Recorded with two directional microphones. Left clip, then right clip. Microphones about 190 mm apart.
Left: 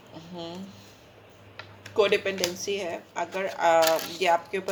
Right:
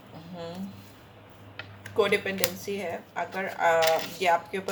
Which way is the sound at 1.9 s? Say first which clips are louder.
Left 2 dB; 40° left (ahead or behind).